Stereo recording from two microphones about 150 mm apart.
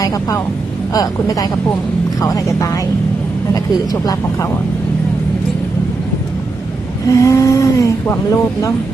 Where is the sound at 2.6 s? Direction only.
20° left (ahead or behind).